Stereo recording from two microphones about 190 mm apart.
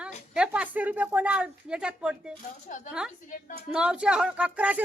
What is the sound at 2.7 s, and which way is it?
Speech, 45° left (ahead or behind).